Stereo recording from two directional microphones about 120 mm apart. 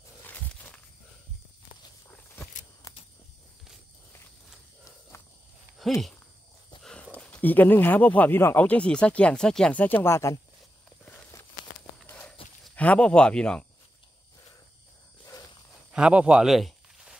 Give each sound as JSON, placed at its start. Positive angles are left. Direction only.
{"t": 0.2, "sound": "walk", "side_deg": 15}
{"t": 5.1, "sound": "walk", "side_deg": 25}
{"t": 5.8, "sound": "speech", "side_deg": 0}
{"t": 12.1, "sound": "clip-clop", "side_deg": 15}
{"t": 12.7, "sound": "speech", "side_deg": 10}
{"t": 15.9, "sound": "a sound", "side_deg": -10}